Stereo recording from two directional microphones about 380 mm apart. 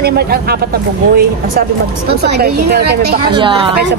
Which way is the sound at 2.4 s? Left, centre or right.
Right.